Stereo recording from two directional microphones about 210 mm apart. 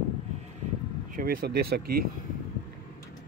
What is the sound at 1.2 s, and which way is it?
Speech, 45° right (ahead or behind).